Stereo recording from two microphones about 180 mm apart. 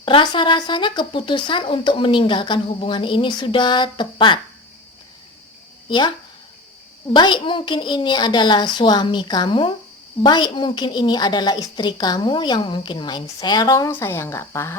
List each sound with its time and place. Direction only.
0.0 s a woman's voice: 30° left (ahead or behind)
5.9 s a woman's voice: 25° left (ahead or behind)